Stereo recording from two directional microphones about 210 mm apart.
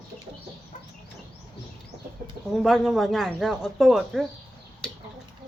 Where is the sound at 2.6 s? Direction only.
Centre (ahead or behind).